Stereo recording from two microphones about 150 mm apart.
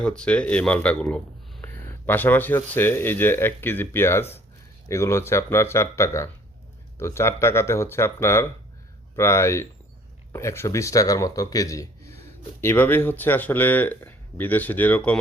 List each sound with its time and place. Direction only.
0.2 s speech: 10° left (ahead or behind)